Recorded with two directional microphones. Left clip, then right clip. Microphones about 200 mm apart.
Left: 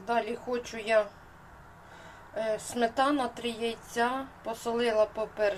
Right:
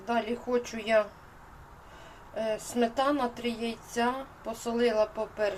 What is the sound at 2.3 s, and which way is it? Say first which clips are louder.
A woman's voice: right 1 dB; centre (ahead or behind).